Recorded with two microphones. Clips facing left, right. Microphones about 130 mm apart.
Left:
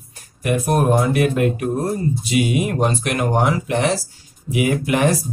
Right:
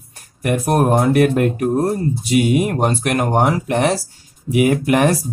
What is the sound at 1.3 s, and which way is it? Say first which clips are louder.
Speech: right 2 dB; 45° right (ahead or behind).